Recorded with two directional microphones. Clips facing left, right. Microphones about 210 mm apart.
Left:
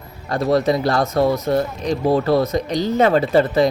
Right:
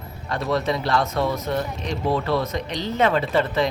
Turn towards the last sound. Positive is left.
turn(degrees=40)  # may be behind; listen again after turning